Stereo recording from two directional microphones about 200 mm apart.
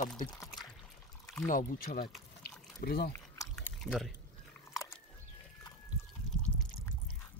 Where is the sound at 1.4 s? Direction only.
40° left (ahead or behind).